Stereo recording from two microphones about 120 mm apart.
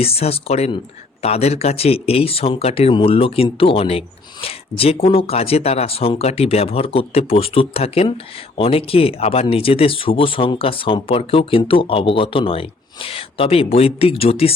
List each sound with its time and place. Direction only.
0.0 s speech: 55° left (ahead or behind)